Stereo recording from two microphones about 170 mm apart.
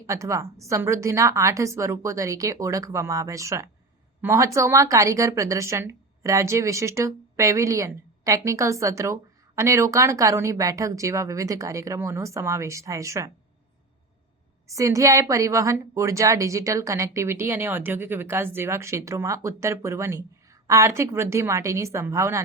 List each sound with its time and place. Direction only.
0.1 s a woman's voice: 15° right (ahead or behind)
14.7 s a woman's voice: 20° right (ahead or behind)